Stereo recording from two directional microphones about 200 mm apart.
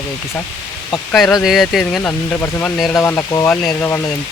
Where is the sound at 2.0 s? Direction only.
10° left (ahead or behind).